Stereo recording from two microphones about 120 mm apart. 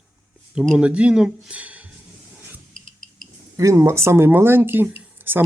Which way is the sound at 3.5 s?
25° right (ahead or behind).